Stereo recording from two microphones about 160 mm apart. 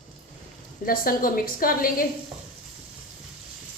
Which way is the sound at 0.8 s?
65° left (ahead or behind).